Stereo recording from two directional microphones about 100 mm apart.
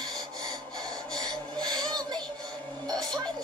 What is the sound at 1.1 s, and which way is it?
Rub, 45° right (ahead or behind).